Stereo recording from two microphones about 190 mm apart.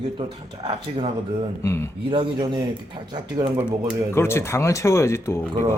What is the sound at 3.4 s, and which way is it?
Speech, 5° right (ahead or behind).